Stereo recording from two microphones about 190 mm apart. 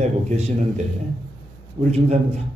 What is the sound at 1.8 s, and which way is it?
Speech, 30° right (ahead or behind).